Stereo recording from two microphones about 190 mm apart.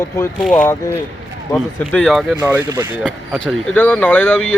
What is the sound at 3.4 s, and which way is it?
Speech, 5° left (ahead or behind).